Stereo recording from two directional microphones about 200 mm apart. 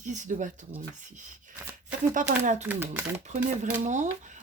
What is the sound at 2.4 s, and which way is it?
Speech, 35° right (ahead or behind).